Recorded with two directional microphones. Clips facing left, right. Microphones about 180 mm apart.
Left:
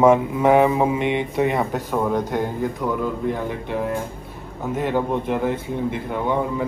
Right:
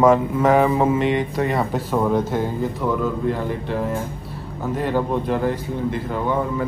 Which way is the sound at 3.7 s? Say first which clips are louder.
Left 2 dB; centre (ahead or behind).